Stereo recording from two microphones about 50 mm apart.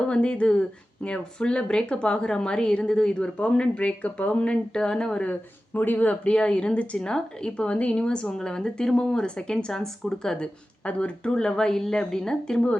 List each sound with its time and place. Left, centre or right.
0.1 s a woman's voice: left
5.2 s a woman's voice: left; by 10.3 s centre
10.4 s a woman's voice: left